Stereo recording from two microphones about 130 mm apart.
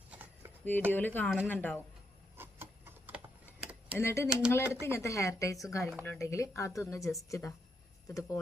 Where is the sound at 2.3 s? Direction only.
15° right (ahead or behind).